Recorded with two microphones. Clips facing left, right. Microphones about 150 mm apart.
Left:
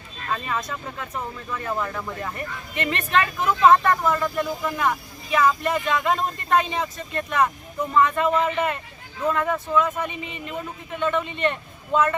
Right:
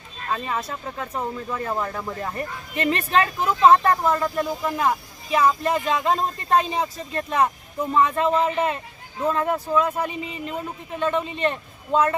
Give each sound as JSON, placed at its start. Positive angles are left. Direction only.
{"t": 0.3, "sound": "speech", "side_deg": -25}